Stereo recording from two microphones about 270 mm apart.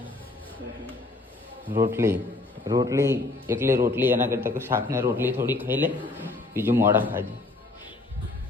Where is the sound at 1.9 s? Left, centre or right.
Centre.